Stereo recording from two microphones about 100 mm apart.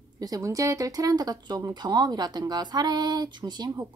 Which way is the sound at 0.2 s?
35° right (ahead or behind).